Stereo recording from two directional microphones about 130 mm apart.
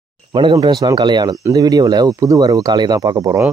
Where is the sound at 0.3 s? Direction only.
35° right (ahead or behind).